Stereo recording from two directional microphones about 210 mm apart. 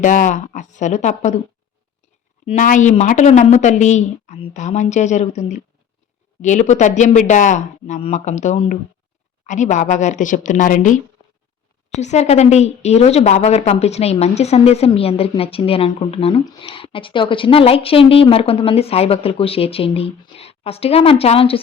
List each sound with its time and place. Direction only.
0.0 s a woman's voice: 35° left (ahead or behind)
2.5 s a woman's voice: 35° left (ahead or behind)